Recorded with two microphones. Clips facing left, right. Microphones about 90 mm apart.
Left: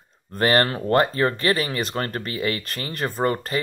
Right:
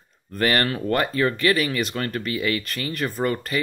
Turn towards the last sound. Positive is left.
turn(degrees=35)  # may be behind; listen again after turning